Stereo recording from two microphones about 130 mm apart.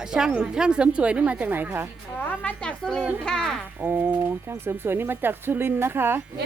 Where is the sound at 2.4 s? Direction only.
10° left (ahead or behind).